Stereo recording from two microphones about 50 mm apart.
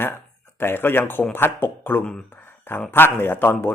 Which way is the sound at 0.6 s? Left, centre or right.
Left.